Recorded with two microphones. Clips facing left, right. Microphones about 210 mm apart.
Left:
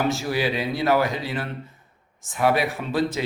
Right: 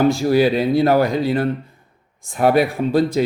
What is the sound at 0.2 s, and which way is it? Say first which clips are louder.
Speech: right 9 dB; 45° right (ahead or behind).